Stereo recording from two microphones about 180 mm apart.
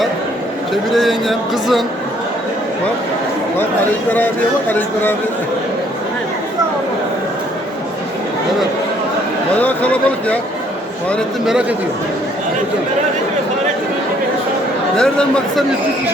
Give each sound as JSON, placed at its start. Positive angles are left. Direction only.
{"t": 0.7, "sound": "speech", "side_deg": 0}
{"t": 3.6, "sound": "a man's voice", "side_deg": 10}
{"t": 9.6, "sound": "a man's voice", "side_deg": 10}
{"t": 11.1, "sound": "speech", "side_deg": -5}
{"t": 14.9, "sound": "speech", "side_deg": 5}